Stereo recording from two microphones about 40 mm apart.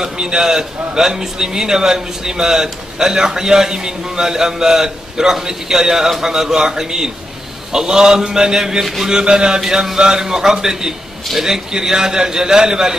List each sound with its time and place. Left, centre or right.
0.0 s a man's voice: centre